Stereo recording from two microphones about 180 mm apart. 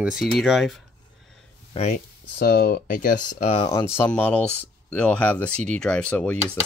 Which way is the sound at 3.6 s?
25° left (ahead or behind).